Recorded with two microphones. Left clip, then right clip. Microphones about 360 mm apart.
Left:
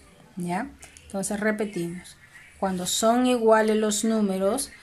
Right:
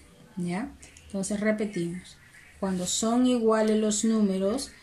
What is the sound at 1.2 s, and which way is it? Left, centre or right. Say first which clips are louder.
Speech: left 2 dB; centre.